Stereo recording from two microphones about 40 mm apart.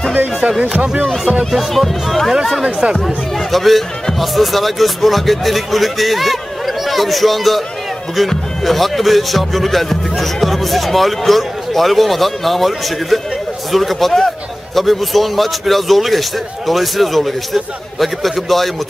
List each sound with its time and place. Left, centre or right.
0.4 s speech: right
1.5 s speech: centre
2.6 s speech: right
3.5 s speech: centre